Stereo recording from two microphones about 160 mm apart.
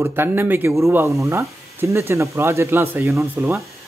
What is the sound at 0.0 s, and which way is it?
Speech, 15° right (ahead or behind).